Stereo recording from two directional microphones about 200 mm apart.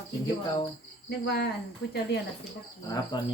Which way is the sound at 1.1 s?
55° left (ahead or behind).